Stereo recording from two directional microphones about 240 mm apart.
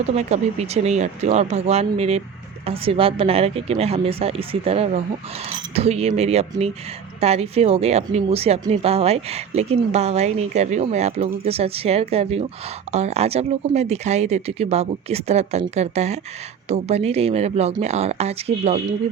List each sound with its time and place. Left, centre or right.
0.2 s speech: right